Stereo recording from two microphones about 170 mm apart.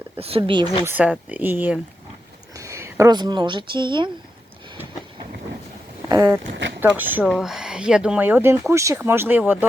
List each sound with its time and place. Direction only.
0.2 s speech: 35° right (ahead or behind)
0.9 s speech: 10° right (ahead or behind); by 4.1 s 30° right (ahead or behind)
6.1 s zipper: 20° right (ahead or behind)
6.5 s speech: 90° right
6.7 s speech: 10° right (ahead or behind)